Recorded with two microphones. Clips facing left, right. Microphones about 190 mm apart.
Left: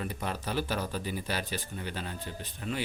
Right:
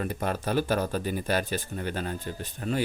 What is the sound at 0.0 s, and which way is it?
Speech, 50° right (ahead or behind).